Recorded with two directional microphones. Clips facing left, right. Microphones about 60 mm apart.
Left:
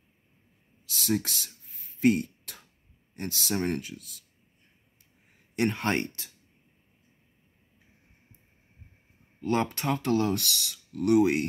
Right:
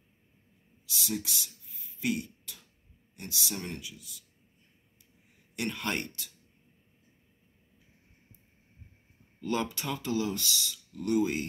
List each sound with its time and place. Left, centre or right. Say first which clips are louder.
1.0 s a sound: left 7 dB; left
3.2 s speech: left 8 dB; left
5.6 s speech: left 6 dB; left
9.4 s speech: left 4 dB; left